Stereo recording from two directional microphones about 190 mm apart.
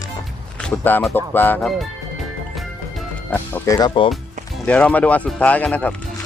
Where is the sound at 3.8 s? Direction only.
25° left (ahead or behind).